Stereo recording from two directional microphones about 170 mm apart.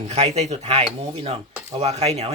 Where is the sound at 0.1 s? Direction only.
40° right (ahead or behind).